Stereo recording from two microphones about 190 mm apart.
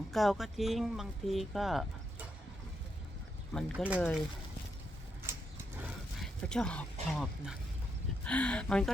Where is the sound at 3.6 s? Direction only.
5° left (ahead or behind).